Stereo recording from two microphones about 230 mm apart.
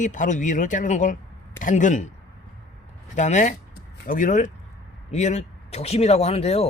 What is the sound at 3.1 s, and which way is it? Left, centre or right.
Speech, left.